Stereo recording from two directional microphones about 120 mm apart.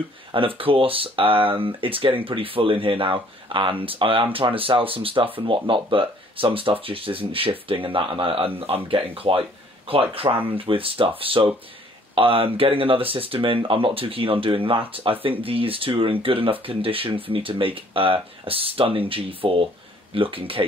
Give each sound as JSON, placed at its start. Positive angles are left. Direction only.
{"t": 0.3, "sound": "speech", "side_deg": -50}